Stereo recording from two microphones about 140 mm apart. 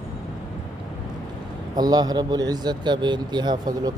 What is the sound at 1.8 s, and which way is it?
A man's voice, 30° right (ahead or behind).